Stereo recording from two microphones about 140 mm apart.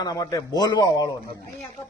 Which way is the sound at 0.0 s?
25° left (ahead or behind).